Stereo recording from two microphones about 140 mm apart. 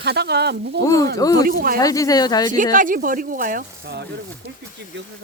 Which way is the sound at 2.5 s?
70° right (ahead or behind).